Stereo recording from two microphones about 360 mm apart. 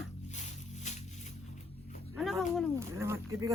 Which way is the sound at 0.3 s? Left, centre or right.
Centre.